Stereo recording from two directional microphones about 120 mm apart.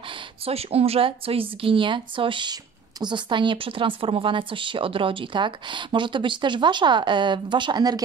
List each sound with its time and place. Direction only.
0.5 s a woman's voice: 55° right (ahead or behind); by 8.0 s 35° right (ahead or behind)